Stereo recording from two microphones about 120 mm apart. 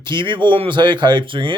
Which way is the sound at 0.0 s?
40° right (ahead or behind).